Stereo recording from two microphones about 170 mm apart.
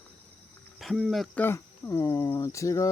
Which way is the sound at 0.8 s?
Centre (ahead or behind).